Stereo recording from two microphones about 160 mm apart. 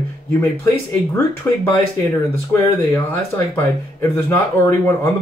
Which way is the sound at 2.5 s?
15° left (ahead or behind).